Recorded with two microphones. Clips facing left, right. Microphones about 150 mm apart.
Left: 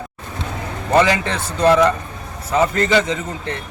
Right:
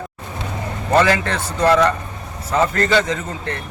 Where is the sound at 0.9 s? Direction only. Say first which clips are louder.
Even; 15° left (ahead or behind).